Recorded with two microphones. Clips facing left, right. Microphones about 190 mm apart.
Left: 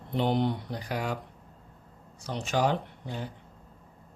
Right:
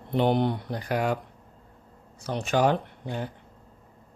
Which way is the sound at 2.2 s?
60° right (ahead or behind).